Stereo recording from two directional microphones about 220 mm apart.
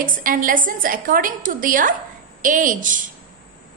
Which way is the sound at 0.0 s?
40° right (ahead or behind).